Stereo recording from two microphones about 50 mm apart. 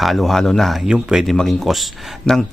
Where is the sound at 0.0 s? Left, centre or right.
Centre.